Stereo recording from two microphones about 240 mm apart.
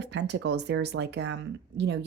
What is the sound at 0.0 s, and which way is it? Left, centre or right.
Speech, right.